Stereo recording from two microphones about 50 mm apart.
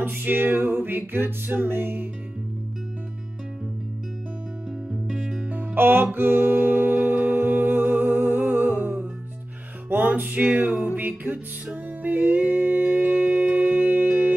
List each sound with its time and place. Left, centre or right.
0.0 s music: right
5.0 s music: centre
5.5 s music: right
6.1 s humming: right
9.8 s music: right
10.2 s music: right